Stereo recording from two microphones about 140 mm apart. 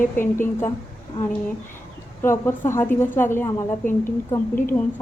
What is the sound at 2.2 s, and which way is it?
A woman's voice, 15° left (ahead or behind).